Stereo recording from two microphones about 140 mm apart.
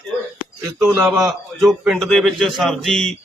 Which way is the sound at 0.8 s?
15° right (ahead or behind).